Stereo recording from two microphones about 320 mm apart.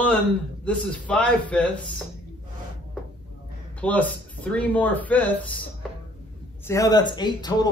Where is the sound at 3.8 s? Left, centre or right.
Centre.